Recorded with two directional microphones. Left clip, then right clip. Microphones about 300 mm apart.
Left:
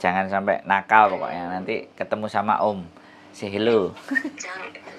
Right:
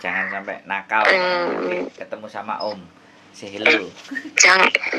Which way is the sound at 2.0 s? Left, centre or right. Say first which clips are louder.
Left 6 dB; left.